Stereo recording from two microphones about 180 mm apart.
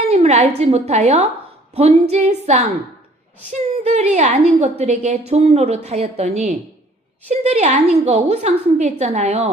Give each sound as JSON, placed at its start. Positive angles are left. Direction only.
{"t": 0.1, "sound": "a woman's voice", "side_deg": -40}
{"t": 3.8, "sound": "a woman's voice", "side_deg": -40}